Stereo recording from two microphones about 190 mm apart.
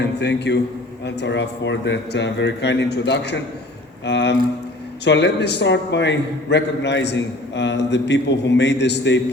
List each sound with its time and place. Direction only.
0.0 s a man's voice: 65° left (ahead or behind)